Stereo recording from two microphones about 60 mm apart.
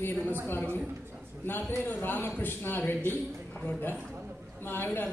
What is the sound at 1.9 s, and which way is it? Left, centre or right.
A man's voice, left.